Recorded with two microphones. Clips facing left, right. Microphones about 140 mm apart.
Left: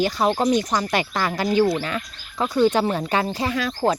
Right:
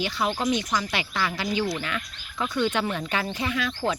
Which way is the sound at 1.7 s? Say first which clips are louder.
Left 6 dB; 35° left (ahead or behind).